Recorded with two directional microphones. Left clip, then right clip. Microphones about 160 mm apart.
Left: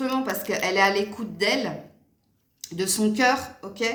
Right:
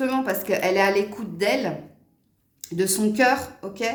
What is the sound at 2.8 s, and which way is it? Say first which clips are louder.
A woman's voice: right 2 dB; 35° right (ahead or behind).